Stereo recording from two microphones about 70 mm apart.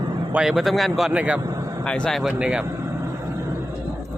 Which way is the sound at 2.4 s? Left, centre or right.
Centre.